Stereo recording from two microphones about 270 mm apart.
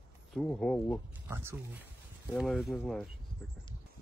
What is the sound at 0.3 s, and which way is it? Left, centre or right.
Speech, centre.